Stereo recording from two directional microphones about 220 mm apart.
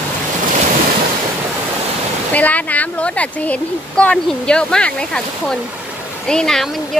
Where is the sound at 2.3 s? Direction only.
5° left (ahead or behind).